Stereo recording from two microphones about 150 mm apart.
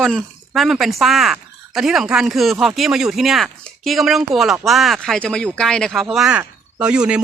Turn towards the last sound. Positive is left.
turn(degrees=-10)  # may be behind; listen again after turning